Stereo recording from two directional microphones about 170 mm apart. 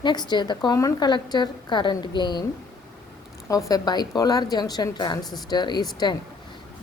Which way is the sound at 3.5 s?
20° left (ahead or behind).